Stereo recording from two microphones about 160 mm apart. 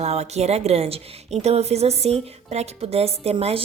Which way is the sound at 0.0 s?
45° right (ahead or behind).